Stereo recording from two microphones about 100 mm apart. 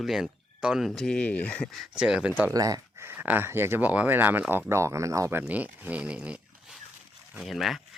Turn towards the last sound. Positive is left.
turn(degrees=0)  # may be behind; listen again after turning